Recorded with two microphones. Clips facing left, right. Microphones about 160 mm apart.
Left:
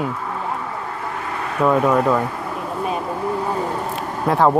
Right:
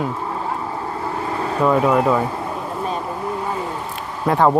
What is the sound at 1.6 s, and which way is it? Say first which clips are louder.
Speech: even; 5° right (ahead or behind).